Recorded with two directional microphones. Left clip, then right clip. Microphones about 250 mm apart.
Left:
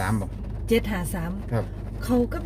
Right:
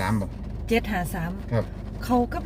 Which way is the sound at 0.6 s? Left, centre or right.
Left.